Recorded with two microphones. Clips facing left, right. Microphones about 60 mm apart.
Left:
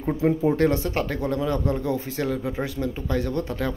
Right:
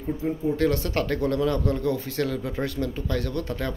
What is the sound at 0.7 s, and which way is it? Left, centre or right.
Speech, centre.